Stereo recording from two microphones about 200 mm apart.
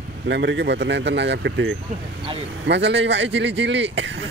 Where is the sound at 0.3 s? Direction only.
60° right (ahead or behind).